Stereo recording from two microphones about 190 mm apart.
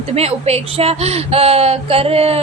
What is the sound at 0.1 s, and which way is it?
A woman's voice, 35° right (ahead or behind).